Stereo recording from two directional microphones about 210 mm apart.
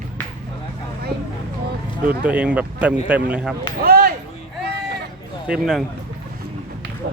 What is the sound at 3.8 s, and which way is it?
Basketball bounce, 45° right (ahead or behind).